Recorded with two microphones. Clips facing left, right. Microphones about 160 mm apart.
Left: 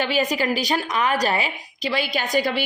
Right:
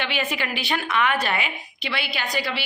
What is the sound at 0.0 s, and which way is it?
A woman's voice, 40° left (ahead or behind).